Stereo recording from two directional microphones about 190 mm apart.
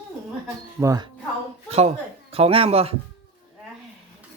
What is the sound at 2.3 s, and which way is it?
Speech, 30° right (ahead or behind).